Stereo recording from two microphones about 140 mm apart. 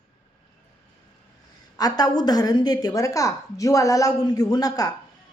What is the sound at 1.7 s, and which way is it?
A woman's voice, 30° left (ahead or behind).